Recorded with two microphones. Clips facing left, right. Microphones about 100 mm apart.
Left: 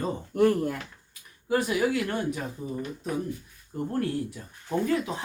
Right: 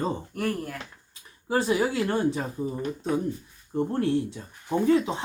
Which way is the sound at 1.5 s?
30° right (ahead or behind).